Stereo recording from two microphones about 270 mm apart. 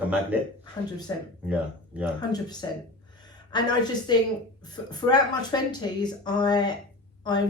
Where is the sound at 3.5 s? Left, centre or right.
Centre.